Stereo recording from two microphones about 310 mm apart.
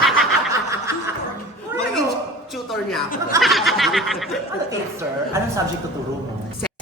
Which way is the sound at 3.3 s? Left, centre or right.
Centre.